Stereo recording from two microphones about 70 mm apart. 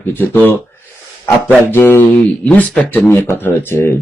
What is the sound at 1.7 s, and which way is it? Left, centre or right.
Speech, left.